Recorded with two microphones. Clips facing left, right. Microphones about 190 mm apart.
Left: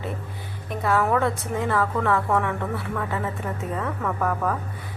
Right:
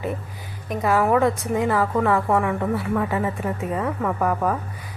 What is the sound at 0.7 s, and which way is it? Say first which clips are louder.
Speech: right 3 dB; 15° right (ahead or behind).